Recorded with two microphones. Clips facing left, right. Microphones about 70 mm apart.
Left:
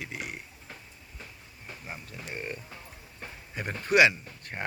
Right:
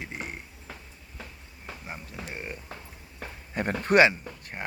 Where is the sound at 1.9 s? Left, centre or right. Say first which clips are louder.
Right 1 dB; centre.